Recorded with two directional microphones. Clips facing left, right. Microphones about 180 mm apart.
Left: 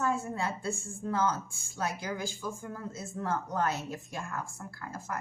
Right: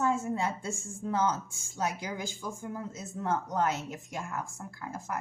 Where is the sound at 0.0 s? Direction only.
20° right (ahead or behind).